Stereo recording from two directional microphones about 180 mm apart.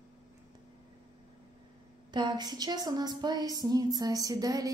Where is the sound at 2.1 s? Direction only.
25° right (ahead or behind).